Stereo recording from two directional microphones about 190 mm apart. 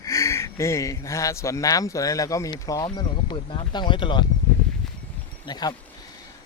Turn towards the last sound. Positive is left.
turn(degrees=20)  # may be behind; listen again after turning